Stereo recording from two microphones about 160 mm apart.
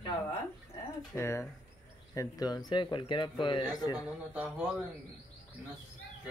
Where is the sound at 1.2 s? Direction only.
15° left (ahead or behind).